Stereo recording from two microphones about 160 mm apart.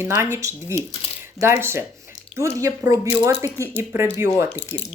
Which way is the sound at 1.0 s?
35° left (ahead or behind).